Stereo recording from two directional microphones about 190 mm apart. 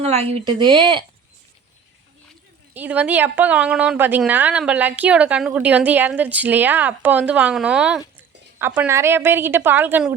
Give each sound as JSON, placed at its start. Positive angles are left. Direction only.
{"t": 0.0, "sound": "speech", "side_deg": -35}
{"t": 2.7, "sound": "speech", "side_deg": -10}